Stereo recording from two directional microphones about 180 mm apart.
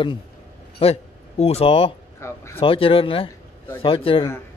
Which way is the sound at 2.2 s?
15° left (ahead or behind).